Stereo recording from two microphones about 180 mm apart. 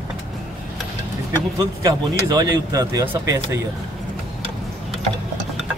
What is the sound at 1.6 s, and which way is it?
Speech, 20° right (ahead or behind).